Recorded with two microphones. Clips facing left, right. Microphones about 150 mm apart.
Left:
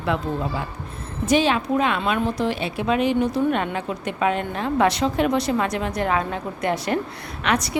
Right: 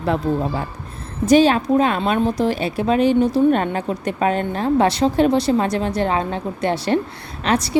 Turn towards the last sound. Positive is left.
turn(degrees=-30)  # may be behind; listen again after turning